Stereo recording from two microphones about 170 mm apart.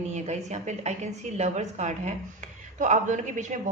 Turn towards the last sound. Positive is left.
turn(degrees=-45)  # may be behind; listen again after turning